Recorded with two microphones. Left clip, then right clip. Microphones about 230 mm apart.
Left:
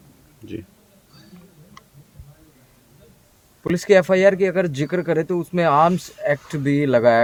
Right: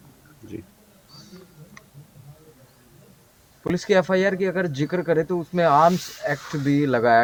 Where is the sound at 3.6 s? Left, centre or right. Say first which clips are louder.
Left 5 dB; left.